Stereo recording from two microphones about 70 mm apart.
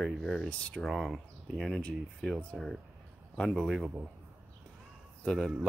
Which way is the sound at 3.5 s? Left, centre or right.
Centre.